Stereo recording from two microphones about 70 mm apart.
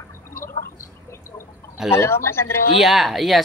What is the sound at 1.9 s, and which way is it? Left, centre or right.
Speech, left.